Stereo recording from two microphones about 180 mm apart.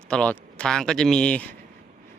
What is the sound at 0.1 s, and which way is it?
Speech, 5° left (ahead or behind).